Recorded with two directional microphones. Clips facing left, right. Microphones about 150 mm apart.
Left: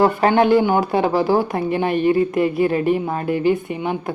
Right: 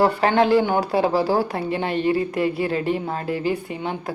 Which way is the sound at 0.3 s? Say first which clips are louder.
Left 4 dB; 20° left (ahead or behind).